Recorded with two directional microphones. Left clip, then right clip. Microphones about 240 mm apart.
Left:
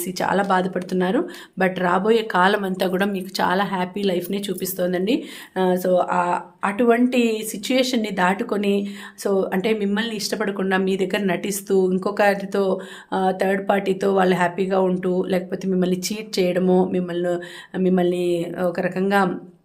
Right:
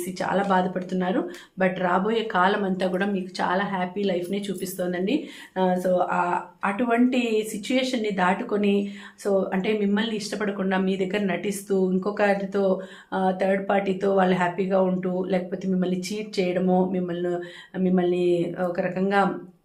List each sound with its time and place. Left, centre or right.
0.2 s speech: left